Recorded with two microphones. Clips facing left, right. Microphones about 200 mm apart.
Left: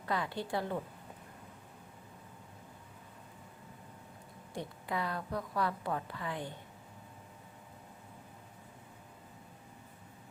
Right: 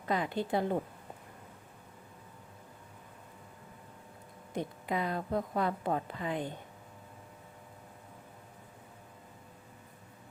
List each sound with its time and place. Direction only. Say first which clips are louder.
0.0 s a woman's voice: right 4 dB; 20° right (ahead or behind)
4.5 s a woman's voice: right 4 dB; 20° right (ahead or behind)